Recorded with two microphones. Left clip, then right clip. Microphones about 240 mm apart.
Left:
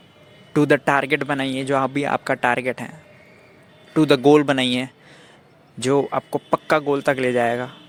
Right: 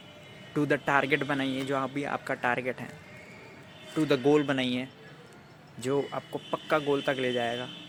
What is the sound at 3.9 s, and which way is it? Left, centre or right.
Speech, left.